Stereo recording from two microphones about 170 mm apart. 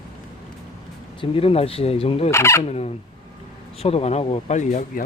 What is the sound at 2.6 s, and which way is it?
Speech, 40° left (ahead or behind).